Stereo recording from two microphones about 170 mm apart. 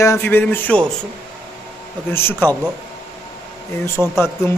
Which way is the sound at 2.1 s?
15° left (ahead or behind).